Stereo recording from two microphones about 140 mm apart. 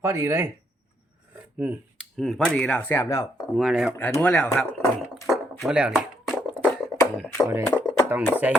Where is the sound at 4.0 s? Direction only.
15° left (ahead or behind).